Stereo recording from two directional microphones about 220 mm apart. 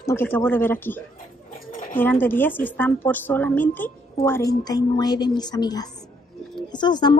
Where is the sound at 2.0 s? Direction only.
10° left (ahead or behind).